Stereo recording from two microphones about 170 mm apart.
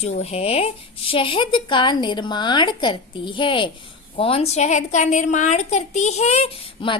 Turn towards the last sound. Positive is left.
turn(degrees=35)  # may be behind; listen again after turning